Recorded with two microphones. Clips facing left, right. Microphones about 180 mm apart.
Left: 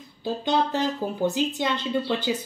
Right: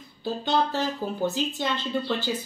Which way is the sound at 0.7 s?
15° left (ahead or behind).